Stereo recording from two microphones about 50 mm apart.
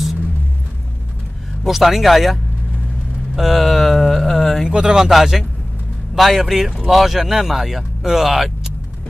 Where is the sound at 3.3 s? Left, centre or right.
Centre.